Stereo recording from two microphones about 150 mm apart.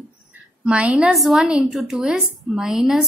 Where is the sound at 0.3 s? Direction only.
10° right (ahead or behind).